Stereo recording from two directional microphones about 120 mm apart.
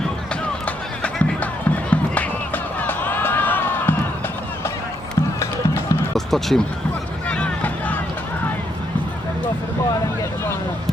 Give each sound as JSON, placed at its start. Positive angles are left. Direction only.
{"t": 1.0, "sound": "music", "side_deg": 10}
{"t": 6.1, "sound": "a sound", "side_deg": 0}
{"t": 7.3, "sound": "vehicle", "side_deg": 10}